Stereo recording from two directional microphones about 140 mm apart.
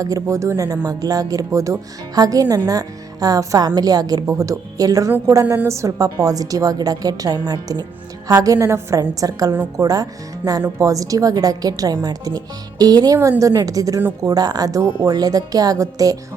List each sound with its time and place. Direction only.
0.0 s a woman's voice: 25° right (ahead or behind)